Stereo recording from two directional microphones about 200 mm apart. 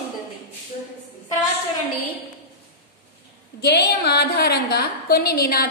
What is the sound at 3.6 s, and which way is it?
A woman's voice, 55° left (ahead or behind).